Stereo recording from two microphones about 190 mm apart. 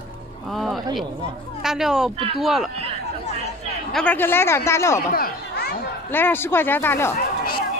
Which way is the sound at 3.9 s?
10° left (ahead or behind).